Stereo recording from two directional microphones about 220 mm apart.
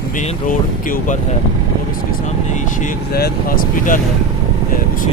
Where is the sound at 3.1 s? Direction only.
40° left (ahead or behind).